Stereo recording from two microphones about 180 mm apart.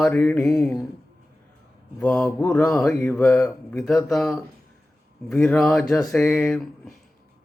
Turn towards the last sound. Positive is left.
turn(degrees=0)  # may be behind; listen again after turning